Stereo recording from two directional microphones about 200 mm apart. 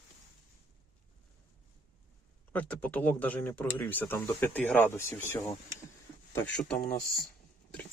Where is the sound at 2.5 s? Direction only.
10° left (ahead or behind).